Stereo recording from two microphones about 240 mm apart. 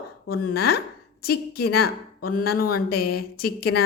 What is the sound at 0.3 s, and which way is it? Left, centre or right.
Speech, left.